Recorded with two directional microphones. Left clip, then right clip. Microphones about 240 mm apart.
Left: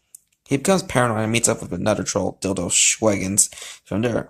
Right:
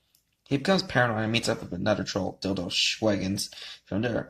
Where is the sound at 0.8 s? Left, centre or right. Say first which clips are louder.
Left 5 dB; left.